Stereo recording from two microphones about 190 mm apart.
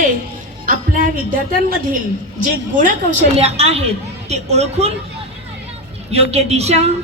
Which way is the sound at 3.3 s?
30° right (ahead or behind).